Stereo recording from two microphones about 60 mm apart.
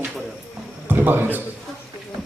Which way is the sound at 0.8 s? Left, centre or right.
Right.